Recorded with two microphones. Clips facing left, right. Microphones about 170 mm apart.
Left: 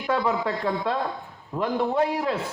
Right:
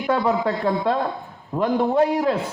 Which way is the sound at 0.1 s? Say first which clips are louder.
Right 4 dB; 40° right (ahead or behind).